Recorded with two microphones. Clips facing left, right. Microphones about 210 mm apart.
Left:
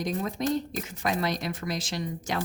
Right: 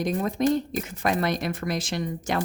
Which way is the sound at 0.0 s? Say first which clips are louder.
Right 5 dB; 55° right (ahead or behind).